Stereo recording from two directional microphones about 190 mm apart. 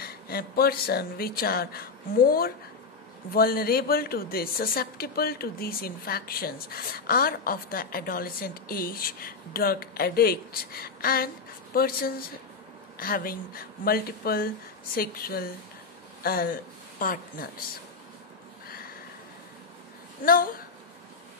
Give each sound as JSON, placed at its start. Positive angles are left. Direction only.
{"t": 0.0, "sound": "speech", "side_deg": 55}
{"t": 20.2, "sound": "speech", "side_deg": 45}